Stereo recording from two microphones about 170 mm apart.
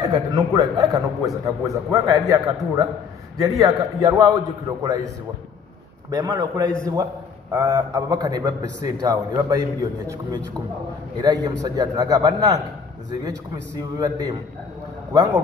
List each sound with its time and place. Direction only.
0.0 s a man's voice: 20° right (ahead or behind)
6.0 s a man's voice: 20° right (ahead or behind)
13.7 s a man's voice: 20° right (ahead or behind)